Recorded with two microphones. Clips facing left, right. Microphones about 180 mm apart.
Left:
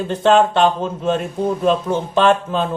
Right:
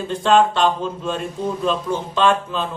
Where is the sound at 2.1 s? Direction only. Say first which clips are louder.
Left 3 dB; 55° left (ahead or behind).